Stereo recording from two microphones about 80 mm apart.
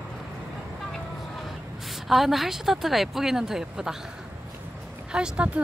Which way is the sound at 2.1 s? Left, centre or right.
Centre.